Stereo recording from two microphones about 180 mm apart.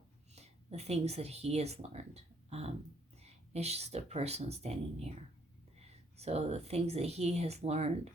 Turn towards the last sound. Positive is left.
turn(degrees=-35)  # may be behind; listen again after turning